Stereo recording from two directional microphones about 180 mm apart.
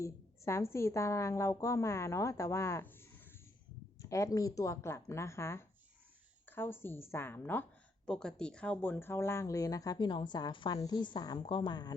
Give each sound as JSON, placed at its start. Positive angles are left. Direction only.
{"t": 0.0, "sound": "a woman's voice", "side_deg": 15}